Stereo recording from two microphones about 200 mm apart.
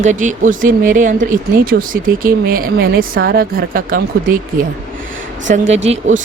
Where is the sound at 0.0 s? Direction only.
35° right (ahead or behind).